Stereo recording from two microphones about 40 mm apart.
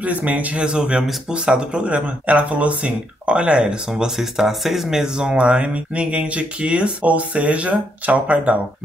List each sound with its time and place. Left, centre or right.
0.0 s speech: right
0.7 s speech: right
4.0 s speech: centre
5.0 s speech: centre; by 8.2 s right